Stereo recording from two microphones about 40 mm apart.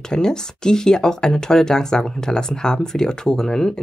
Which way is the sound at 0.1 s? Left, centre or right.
Centre.